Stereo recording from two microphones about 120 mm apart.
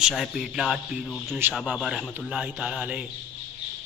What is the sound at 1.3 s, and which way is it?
Speech, 20° right (ahead or behind).